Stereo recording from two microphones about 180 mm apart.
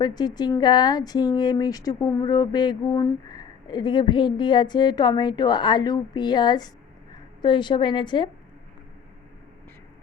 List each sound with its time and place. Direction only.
0.0 s a woman's voice: 20° left (ahead or behind)